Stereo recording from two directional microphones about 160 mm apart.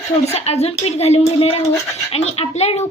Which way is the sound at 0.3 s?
40° left (ahead or behind).